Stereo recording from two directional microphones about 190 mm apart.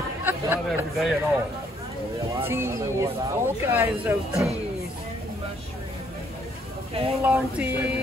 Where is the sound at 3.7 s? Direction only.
10° right (ahead or behind).